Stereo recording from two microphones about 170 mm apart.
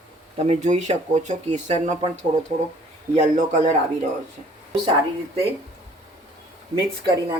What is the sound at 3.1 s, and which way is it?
Speech, 45° right (ahead or behind).